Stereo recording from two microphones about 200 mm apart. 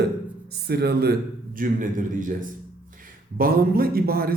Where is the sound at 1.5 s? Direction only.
40° right (ahead or behind).